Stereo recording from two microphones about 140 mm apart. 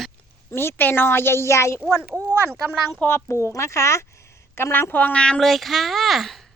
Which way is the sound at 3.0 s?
20° left (ahead or behind).